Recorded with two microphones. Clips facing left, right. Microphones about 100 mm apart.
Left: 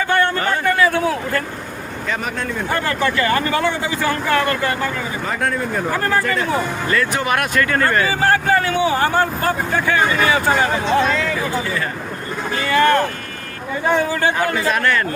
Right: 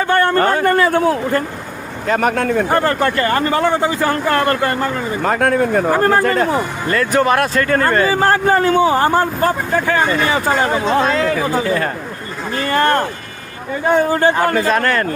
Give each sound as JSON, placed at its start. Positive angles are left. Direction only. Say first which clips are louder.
{"t": 0.1, "sound": "a man's voice", "louder": "right 5 dB", "side_deg": -40}
{"t": 2.0, "sound": "speech", "louder": "right 9 dB", "side_deg": -60}
{"t": 2.6, "sound": "speech", "louder": "right 4 dB", "side_deg": -40}
{"t": 7.3, "sound": "speech", "louder": "right 3 dB", "side_deg": -30}